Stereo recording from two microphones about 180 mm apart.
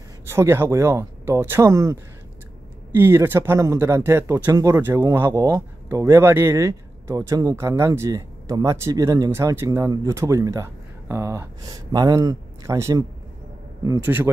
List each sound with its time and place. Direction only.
0.2 s speech: 15° right (ahead or behind)